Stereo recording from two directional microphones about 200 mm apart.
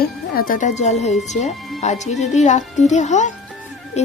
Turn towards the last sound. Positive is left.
turn(degrees=35)  # may be behind; listen again after turning